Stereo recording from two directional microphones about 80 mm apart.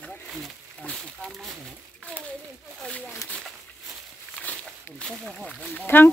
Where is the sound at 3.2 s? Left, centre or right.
Left.